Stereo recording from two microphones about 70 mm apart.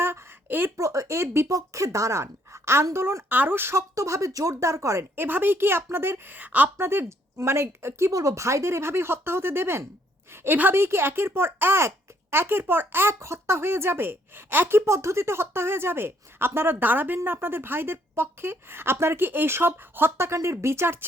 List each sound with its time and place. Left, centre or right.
0.0 s a sound: right
0.8 s speech: right
5.1 s speech: right
6.7 s speech: right
8.1 s speech: right